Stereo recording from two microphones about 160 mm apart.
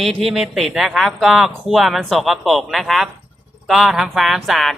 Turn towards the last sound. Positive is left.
turn(degrees=0)  # may be behind; listen again after turning